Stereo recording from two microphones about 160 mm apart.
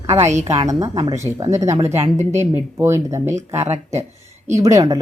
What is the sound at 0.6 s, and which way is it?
A woman's voice, 20° right (ahead or behind).